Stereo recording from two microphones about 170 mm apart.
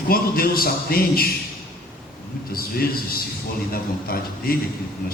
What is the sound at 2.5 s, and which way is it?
A man's voice, 65° left (ahead or behind).